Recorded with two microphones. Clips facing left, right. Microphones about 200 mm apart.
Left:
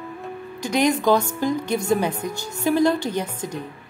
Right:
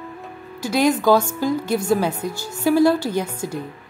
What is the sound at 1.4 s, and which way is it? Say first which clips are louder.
A woman's voice: right 2 dB; 5° right (ahead or behind).